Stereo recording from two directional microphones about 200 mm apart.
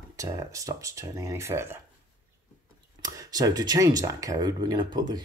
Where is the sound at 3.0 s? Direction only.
15° right (ahead or behind).